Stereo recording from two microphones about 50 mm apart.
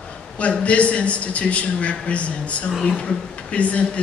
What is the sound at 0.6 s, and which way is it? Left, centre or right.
A man's voice, left.